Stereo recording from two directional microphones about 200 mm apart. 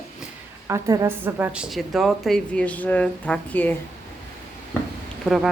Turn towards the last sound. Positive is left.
turn(degrees=0)  # may be behind; listen again after turning